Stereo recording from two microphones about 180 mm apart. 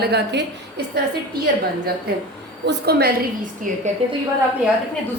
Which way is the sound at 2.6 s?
65° right (ahead or behind).